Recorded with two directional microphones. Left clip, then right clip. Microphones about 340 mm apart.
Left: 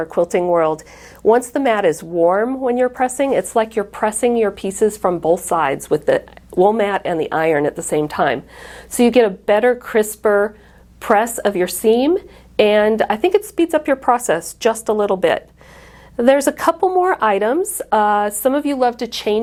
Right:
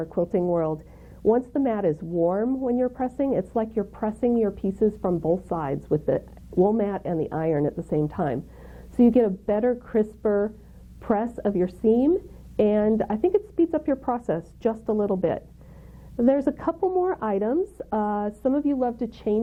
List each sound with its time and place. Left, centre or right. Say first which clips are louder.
0.0 s a woman's voice: left 8 dB; centre
16.8 s speech: left 7 dB; centre
17.1 s a woman's voice: left 10 dB; centre